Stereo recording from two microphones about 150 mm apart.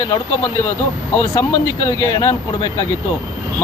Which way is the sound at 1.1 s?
15° left (ahead or behind).